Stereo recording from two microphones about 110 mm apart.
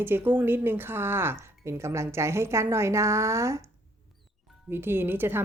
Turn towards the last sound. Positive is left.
turn(degrees=-20)  # may be behind; listen again after turning